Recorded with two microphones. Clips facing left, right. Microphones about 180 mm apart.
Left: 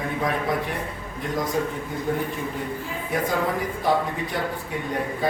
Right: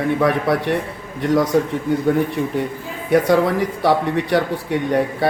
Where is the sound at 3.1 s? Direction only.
75° right (ahead or behind).